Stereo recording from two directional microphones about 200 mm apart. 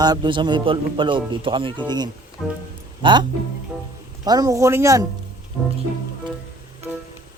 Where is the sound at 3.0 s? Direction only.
20° right (ahead or behind).